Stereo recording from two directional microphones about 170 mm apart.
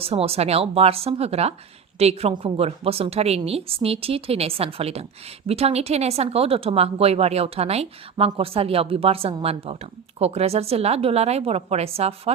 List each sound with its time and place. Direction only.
0.0 s speech: 35° right (ahead or behind)